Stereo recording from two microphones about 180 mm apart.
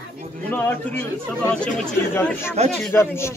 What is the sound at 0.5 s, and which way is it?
Speech, 10° left (ahead or behind).